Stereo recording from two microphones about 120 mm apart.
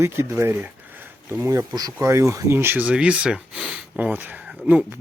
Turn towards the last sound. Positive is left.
turn(degrees=-15)  # may be behind; listen again after turning